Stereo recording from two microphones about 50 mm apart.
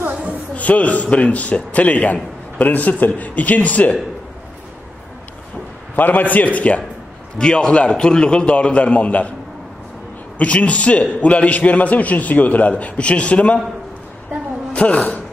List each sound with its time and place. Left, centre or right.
0.3 s a sound: left
1.1 s a man's voice: left
5.9 s a man's voice: left
7.3 s a man's voice: centre
10.4 s a man's voice: left
14.7 s speech: left